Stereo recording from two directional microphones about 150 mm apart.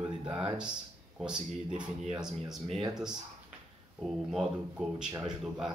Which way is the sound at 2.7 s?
5° right (ahead or behind).